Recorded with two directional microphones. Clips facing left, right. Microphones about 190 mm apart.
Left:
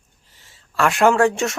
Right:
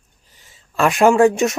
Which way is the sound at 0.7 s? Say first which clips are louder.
Right 2 dB; 20° right (ahead or behind).